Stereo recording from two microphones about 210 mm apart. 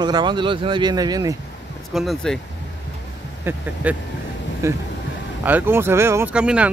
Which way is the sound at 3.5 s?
10° right (ahead or behind).